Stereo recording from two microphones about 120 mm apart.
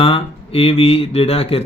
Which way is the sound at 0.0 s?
50° left (ahead or behind).